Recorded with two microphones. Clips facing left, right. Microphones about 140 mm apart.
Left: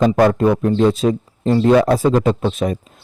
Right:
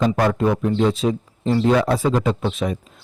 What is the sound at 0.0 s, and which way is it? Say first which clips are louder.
Speech: left 5 dB; 45° left (ahead or behind).